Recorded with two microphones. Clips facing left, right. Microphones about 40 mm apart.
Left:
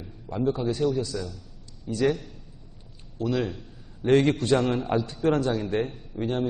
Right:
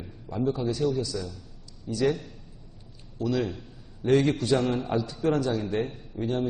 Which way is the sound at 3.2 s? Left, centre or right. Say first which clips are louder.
Left 1 dB; centre.